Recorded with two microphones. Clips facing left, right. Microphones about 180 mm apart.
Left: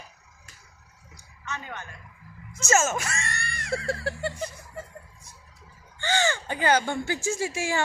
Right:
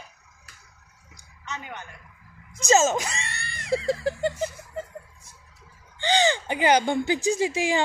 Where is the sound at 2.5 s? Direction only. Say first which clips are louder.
Right 4 dB; 15° right (ahead or behind).